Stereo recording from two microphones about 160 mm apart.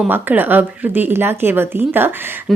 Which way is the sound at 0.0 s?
10° right (ahead or behind).